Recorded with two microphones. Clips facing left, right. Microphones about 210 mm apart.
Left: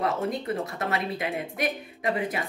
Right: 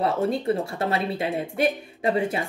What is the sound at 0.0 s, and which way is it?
A woman's voice, 30° right (ahead or behind).